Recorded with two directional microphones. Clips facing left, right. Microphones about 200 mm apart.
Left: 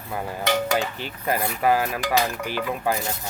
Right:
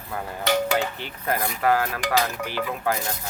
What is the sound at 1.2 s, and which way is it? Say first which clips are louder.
Speech: left 1 dB; 15° left (ahead or behind).